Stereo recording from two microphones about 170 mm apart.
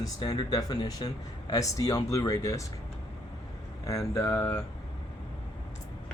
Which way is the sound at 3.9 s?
20° left (ahead or behind).